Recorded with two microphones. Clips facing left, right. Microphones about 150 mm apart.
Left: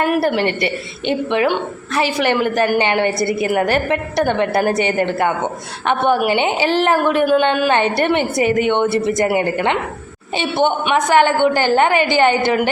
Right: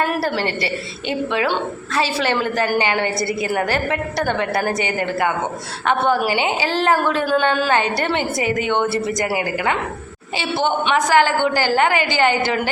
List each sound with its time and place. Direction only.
0.0 s a woman's voice: 15° left (ahead or behind)